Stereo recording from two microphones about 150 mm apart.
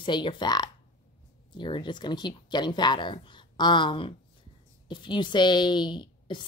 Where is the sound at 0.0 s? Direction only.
35° left (ahead or behind).